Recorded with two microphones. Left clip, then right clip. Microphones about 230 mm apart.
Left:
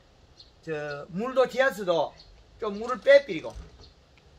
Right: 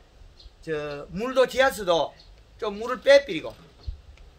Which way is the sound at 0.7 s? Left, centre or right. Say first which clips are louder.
Right 3 dB; right.